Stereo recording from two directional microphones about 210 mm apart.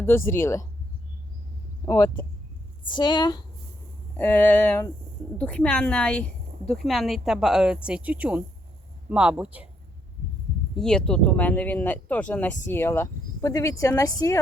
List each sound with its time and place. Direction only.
0.0 s speech: 10° left (ahead or behind)
1.8 s a woman's voice: 15° left (ahead or behind)
4.2 s a woman's voice: 10° left (ahead or behind); by 9.6 s 5° right (ahead or behind)
10.8 s speech: 5° left (ahead or behind)